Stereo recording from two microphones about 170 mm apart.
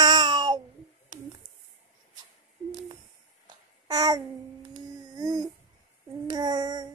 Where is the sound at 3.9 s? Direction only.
20° right (ahead or behind).